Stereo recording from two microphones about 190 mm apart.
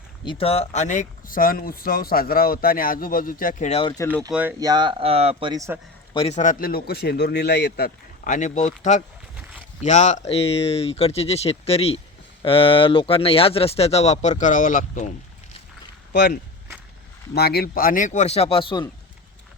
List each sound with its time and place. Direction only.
0.3 s speech: 30° left (ahead or behind)
4.3 s speech: 5° right (ahead or behind)
4.6 s a man's voice: 20° right (ahead or behind)
6.1 s speech: 35° left (ahead or behind)
17.3 s speech: 55° left (ahead or behind); by 18.9 s 25° left (ahead or behind)